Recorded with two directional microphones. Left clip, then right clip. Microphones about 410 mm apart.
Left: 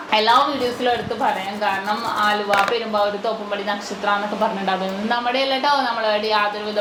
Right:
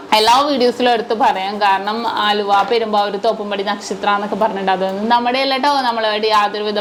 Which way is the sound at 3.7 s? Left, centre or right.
Right.